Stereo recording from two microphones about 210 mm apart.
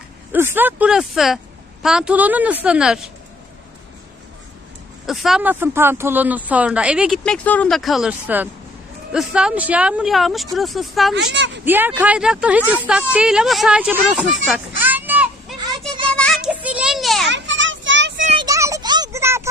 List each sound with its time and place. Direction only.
0.3 s speech: 10° right (ahead or behind)
5.0 s speech: centre (ahead or behind)
11.1 s speech: 55° right (ahead or behind)
11.6 s speech: 10° right (ahead or behind)
16.1 s music: 5° left (ahead or behind)
17.2 s child singing: 60° right (ahead or behind)
18.3 s a sound: 15° right (ahead or behind)